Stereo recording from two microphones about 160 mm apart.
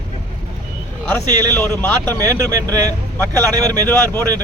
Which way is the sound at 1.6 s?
10° left (ahead or behind).